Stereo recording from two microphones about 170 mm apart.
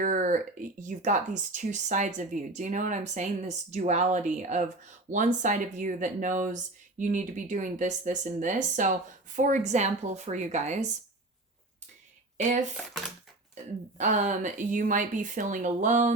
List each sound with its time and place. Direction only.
0.0 s speech: 50° right (ahead or behind)
14.0 s speech: 45° right (ahead or behind)